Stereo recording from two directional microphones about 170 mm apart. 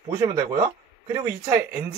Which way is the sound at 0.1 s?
20° right (ahead or behind).